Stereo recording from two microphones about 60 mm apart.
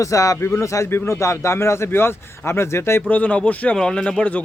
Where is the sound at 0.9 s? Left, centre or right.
Left.